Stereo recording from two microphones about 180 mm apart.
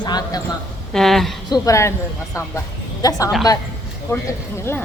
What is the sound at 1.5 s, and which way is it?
Speech, 20° left (ahead or behind).